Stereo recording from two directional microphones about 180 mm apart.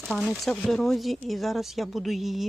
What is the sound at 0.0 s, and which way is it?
Speech, centre (ahead or behind).